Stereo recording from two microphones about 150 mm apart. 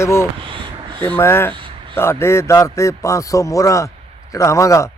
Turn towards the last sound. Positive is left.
turn(degrees=20)  # may be behind; listen again after turning